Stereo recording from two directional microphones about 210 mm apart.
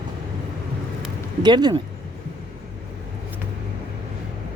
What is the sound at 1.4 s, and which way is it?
Speech, 20° right (ahead or behind).